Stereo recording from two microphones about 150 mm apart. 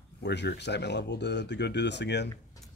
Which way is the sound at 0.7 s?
90° left.